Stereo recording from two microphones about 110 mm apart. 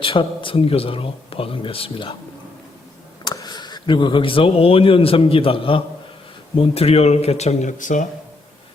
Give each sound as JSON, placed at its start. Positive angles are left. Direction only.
{"t": 0.0, "sound": "speech", "side_deg": 50}
{"t": 3.2, "sound": "speech", "side_deg": 35}
{"t": 6.6, "sound": "speech", "side_deg": 65}